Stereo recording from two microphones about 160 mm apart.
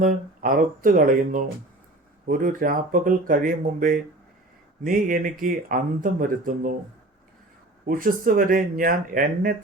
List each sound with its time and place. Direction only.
0.0 s speech: 60° right (ahead or behind)
7.9 s speech: 60° right (ahead or behind)